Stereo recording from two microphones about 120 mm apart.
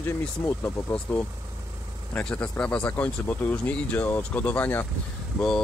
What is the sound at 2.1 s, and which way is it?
Speech, 10° left (ahead or behind).